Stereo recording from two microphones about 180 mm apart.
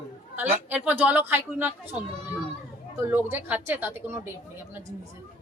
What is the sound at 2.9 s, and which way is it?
A man's voice, 10° right (ahead or behind).